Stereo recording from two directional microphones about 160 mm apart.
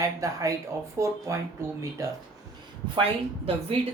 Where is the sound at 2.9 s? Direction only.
35° right (ahead or behind).